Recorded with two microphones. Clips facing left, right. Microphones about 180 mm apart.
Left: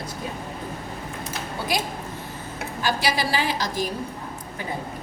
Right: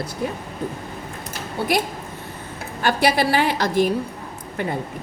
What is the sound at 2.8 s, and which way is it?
A woman's voice, 60° right (ahead or behind).